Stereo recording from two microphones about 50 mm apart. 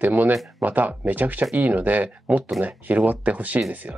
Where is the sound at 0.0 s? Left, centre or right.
Right.